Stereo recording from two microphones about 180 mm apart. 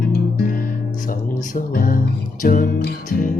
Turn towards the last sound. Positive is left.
turn(degrees=50)  # may be behind; listen again after turning